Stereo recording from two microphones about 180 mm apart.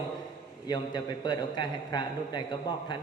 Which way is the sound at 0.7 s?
25° left (ahead or behind).